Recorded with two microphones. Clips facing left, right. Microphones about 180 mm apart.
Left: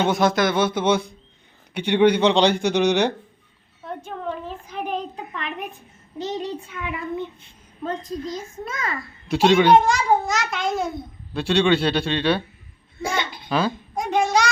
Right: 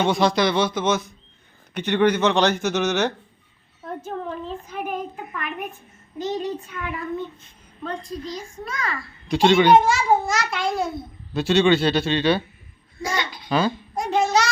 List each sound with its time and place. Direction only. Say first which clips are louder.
0.0 s a child's voice: even; 5° left (ahead or behind)
4.8 s a sound: left 2 dB; 20° left (ahead or behind)
6.2 s child singing: right 2 dB; 20° left (ahead or behind)
9.3 s a child's voice: even; centre (ahead or behind)
13.5 s babbling: right 1 dB; centre (ahead or behind)